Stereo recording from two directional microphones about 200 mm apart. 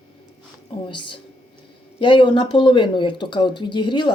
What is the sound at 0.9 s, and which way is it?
Speech, 25° left (ahead or behind).